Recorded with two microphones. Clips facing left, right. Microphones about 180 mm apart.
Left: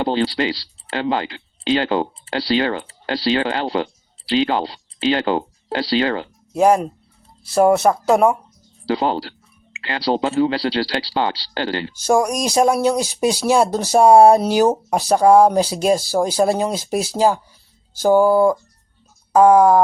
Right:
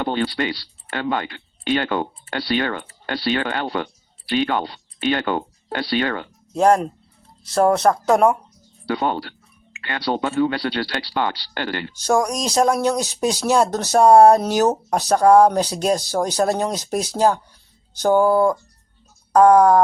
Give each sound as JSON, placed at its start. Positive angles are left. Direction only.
{"t": 0.0, "sound": "speech", "side_deg": 25}
{"t": 6.5, "sound": "speech", "side_deg": 5}
{"t": 8.9, "sound": "speech", "side_deg": 30}
{"t": 12.0, "sound": "speech", "side_deg": 10}